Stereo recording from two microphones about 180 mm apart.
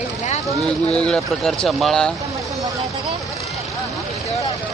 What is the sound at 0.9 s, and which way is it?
Speech, 5° left (ahead or behind).